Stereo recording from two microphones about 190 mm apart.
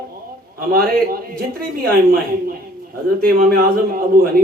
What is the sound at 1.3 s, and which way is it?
Speech, 50° right (ahead or behind).